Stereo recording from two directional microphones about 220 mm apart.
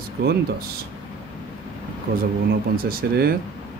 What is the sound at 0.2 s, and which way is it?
Speech, 45° right (ahead or behind).